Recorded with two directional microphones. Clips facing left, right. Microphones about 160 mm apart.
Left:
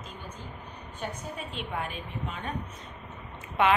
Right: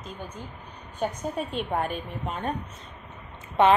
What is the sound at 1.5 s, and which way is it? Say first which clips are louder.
A woman's voice: right 4 dB; 45° right (ahead or behind).